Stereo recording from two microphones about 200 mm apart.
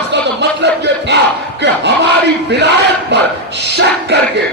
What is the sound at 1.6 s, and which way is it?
Battle cry, 60° right (ahead or behind).